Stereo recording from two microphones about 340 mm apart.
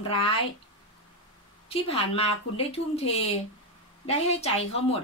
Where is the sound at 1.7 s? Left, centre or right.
Centre.